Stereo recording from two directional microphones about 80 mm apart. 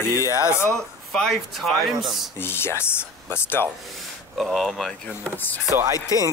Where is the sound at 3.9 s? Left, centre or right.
Centre.